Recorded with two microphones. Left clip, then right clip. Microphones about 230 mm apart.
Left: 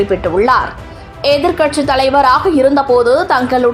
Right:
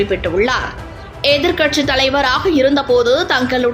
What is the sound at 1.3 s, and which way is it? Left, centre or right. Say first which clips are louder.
A woman's voice: left 2 dB; centre.